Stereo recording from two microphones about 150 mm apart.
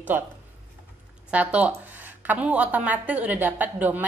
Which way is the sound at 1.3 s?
10° right (ahead or behind).